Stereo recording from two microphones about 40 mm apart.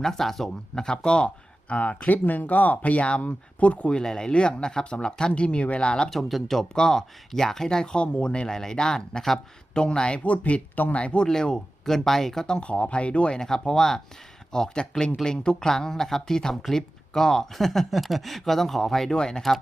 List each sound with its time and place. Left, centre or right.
0.0 s speech: centre
1.7 s speech: left
3.9 s speech: centre
4.3 s speech: left
6.1 s speech: centre; by 10.2 s left
10.2 s speech: left
11.0 s speech: left
11.3 s speech: centre
12.5 s speech: left
13.4 s speech: centre